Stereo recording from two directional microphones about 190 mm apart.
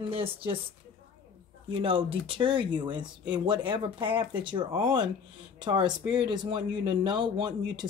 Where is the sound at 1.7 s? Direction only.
30° right (ahead or behind).